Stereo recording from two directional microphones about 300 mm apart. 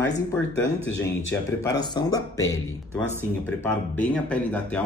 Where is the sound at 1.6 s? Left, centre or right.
Centre.